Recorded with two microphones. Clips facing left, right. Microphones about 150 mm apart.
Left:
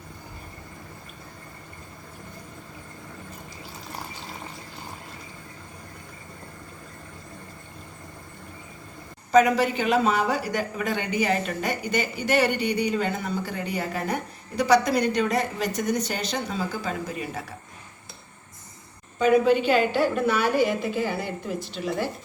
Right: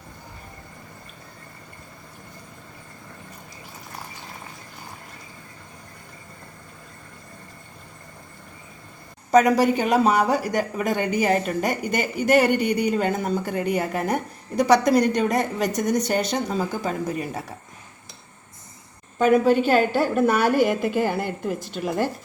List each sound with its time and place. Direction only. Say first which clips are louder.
9.3 s speech: right 2 dB; 45° right (ahead or behind)
19.2 s speech: right 2 dB; 45° right (ahead or behind)